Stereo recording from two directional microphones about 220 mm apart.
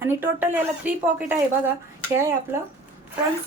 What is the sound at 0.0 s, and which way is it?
A woman's voice, 10° right (ahead or behind).